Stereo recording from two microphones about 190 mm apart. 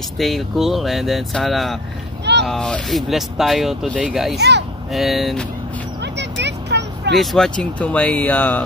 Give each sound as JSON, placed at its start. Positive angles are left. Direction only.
{"t": 0.2, "sound": "speech", "side_deg": 0}
{"t": 4.4, "sound": "speech", "side_deg": -60}
{"t": 4.9, "sound": "speech", "side_deg": 0}
{"t": 6.1, "sound": "vehicle", "side_deg": -65}
{"t": 7.2, "sound": "speech", "side_deg": 0}